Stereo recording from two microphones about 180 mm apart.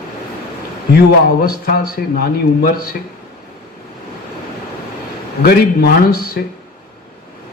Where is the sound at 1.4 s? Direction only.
55° left (ahead or behind).